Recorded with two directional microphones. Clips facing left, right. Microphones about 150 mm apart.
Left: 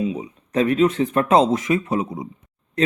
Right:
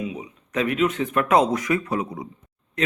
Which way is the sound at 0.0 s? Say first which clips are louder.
Left 6 dB; 30° left (ahead or behind).